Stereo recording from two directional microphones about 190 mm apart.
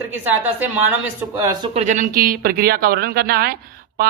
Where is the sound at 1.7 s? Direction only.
40° right (ahead or behind).